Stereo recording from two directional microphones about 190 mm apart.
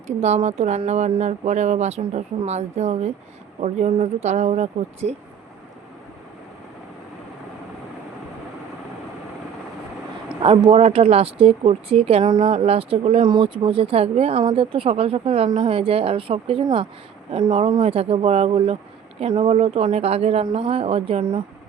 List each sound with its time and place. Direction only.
0.2 s speech: 35° right (ahead or behind)
10.4 s speech: 30° right (ahead or behind)